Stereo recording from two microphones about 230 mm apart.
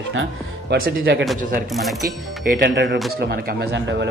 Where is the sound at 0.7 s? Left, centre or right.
Right.